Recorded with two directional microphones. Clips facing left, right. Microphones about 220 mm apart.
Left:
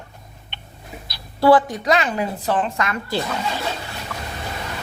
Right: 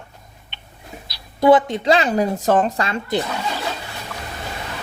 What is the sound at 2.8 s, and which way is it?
Speech, 25° right (ahead or behind).